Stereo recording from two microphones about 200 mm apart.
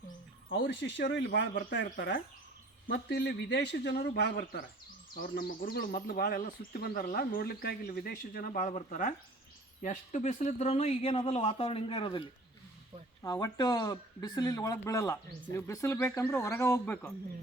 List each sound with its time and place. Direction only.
0.5 s a man's voice: 55° left (ahead or behind); by 12.2 s 25° left (ahead or behind)
13.2 s speech: 20° left (ahead or behind)